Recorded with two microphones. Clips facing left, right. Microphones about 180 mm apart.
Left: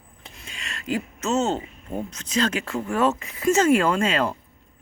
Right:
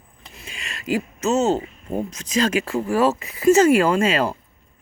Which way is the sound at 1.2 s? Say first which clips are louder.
Right 4 dB; 10° right (ahead or behind).